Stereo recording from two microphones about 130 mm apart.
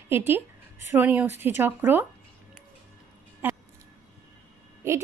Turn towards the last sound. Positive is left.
turn(degrees=-20)  # may be behind; listen again after turning